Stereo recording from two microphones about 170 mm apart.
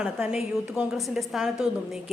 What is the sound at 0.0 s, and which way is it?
A woman's voice, 5° right (ahead or behind).